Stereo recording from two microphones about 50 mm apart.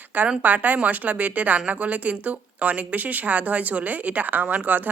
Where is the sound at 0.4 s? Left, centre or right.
Right.